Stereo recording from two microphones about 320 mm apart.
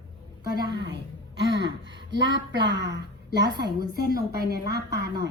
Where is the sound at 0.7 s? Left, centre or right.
Right.